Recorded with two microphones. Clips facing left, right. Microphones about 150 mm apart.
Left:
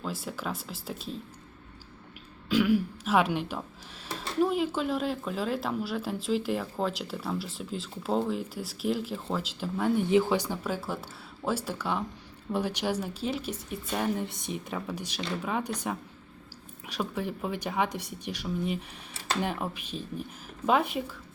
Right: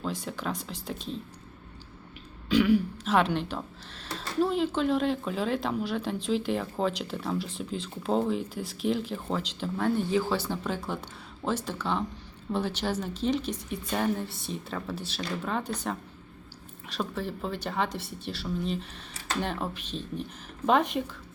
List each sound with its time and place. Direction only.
0.0 s speech: 5° left (ahead or behind)
2.5 s speech: 5° left (ahead or behind)
10.0 s speech: 20° left (ahead or behind)
14.3 s speech: 20° left (ahead or behind)